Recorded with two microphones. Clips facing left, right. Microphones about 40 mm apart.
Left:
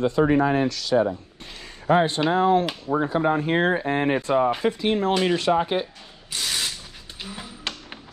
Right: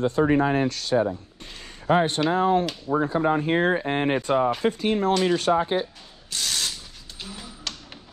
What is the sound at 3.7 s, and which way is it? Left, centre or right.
Speech, left.